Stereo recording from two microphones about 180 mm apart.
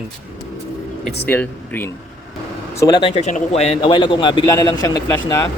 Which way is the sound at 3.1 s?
40° left (ahead or behind).